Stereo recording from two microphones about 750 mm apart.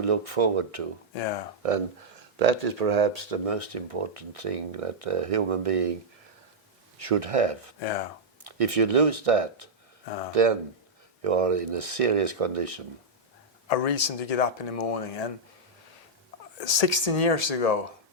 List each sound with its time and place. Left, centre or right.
0.0 s speech: right
1.1 s speech: left
2.4 s speech: right
7.0 s speech: right
7.8 s speech: left
8.4 s speech: right
10.1 s speech: left
10.3 s speech: right
13.7 s speech: left
16.6 s speech: left